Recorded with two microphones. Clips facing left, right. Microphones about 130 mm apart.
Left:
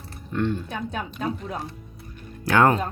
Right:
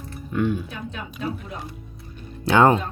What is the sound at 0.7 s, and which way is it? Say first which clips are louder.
Speech: left 4 dB; 40° left (ahead or behind).